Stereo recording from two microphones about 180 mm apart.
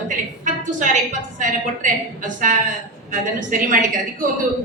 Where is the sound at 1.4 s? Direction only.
45° right (ahead or behind).